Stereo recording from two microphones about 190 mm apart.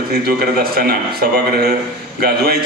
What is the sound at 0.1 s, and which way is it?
A man's voice, 55° right (ahead or behind).